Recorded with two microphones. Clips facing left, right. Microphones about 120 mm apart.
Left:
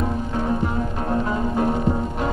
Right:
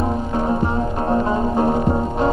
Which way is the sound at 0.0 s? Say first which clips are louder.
Right 3 dB; 35° right (ahead or behind).